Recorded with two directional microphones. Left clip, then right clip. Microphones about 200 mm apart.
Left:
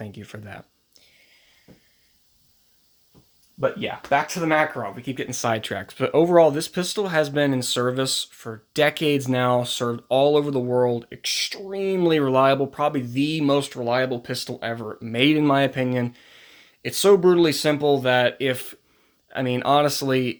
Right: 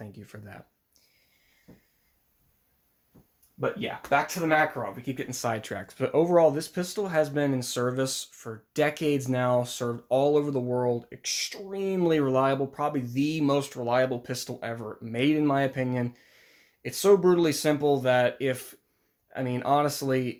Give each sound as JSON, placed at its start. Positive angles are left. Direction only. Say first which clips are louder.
{"t": 0.0, "sound": "speech", "louder": "left 7 dB", "side_deg": 35}
{"t": 3.6, "sound": "speech", "louder": "left 6 dB", "side_deg": 50}